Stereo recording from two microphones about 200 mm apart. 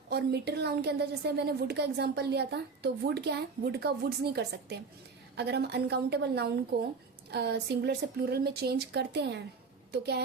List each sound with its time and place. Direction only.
0.1 s a woman's voice: 55° right (ahead or behind)